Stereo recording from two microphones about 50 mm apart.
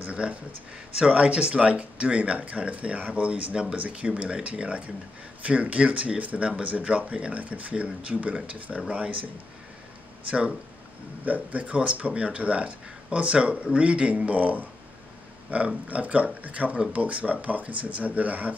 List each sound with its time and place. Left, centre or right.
0.0 s a sound: right
0.9 s speech: right
11.2 s speech: right